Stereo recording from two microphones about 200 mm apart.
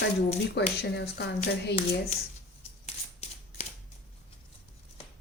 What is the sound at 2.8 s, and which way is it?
Shuffling cards, 30° left (ahead or behind).